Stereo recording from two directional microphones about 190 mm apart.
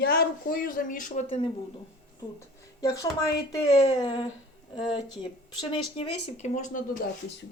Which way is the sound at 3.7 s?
30° left (ahead or behind).